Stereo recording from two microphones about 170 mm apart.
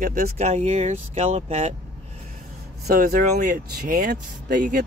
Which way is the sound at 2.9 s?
60° right (ahead or behind).